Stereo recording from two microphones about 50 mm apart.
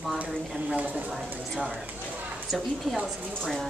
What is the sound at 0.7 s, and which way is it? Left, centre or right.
Speech, right.